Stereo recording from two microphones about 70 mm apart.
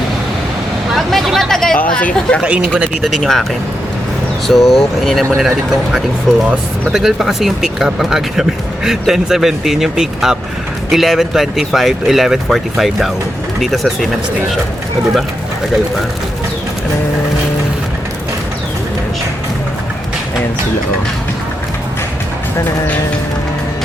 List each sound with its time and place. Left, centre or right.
0.9 s speech: centre
1.9 s speech: centre
2.4 s speech: right
3.0 s speech: centre
4.4 s speech: centre